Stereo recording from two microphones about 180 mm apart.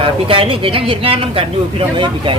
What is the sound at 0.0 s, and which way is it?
Speech, 30° right (ahead or behind).